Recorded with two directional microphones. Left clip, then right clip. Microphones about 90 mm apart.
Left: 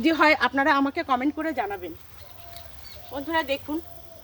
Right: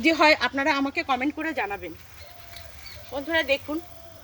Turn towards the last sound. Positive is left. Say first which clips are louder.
# right 2 dB
turn(degrees=40)  # may be behind; listen again after turning